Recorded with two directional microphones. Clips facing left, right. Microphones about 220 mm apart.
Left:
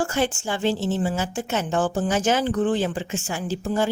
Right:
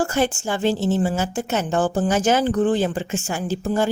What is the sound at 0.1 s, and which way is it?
A woman's voice, 45° right (ahead or behind).